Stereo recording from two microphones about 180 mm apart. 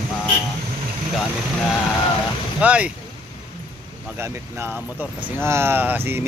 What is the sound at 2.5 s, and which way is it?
Speech, 5° right (ahead or behind).